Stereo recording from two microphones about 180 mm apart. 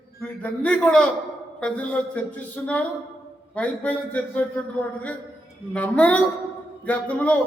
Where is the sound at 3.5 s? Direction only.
10° left (ahead or behind).